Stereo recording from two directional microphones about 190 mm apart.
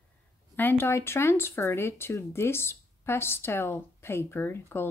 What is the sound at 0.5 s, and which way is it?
Speech, 10° left (ahead or behind).